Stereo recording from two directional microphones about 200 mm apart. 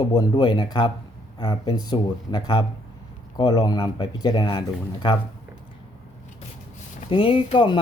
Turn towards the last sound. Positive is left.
turn(degrees=25)  # may be behind; listen again after turning